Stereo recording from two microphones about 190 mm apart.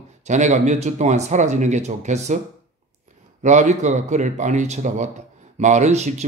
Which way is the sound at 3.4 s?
40° right (ahead or behind).